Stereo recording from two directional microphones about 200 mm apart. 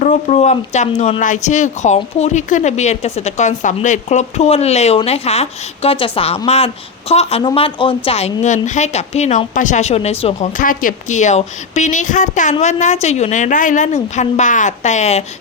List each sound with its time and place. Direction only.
0.0 s speech: 35° left (ahead or behind)
10.6 s speech: 45° left (ahead or behind)